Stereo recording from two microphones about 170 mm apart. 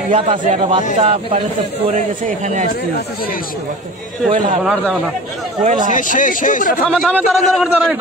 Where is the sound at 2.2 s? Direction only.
45° right (ahead or behind).